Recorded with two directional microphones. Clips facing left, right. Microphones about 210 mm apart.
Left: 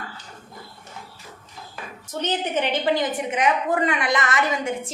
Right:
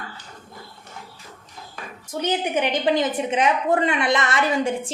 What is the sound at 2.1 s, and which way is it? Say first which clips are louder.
A woman's voice: right 2 dB; 10° right (ahead or behind).